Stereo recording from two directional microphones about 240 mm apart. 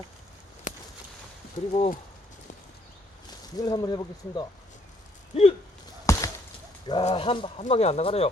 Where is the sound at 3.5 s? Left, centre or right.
Centre.